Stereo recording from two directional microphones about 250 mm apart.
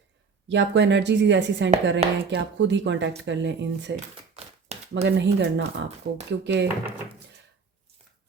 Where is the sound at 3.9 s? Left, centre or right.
Right.